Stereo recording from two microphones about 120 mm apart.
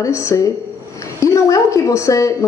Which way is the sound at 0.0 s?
25° left (ahead or behind).